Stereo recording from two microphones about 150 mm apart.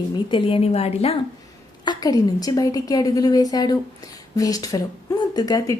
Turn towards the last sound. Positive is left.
turn(degrees=25)  # may be behind; listen again after turning